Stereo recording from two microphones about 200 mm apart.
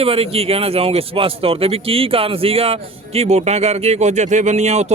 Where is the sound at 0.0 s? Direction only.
30° right (ahead or behind).